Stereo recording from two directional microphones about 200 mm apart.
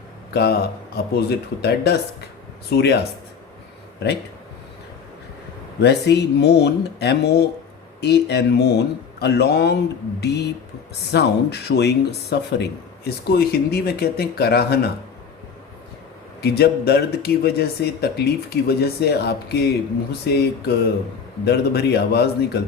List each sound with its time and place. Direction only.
0.3 s speech: 50° left (ahead or behind)
5.8 s speech: 55° left (ahead or behind)
16.4 s speech: 50° left (ahead or behind)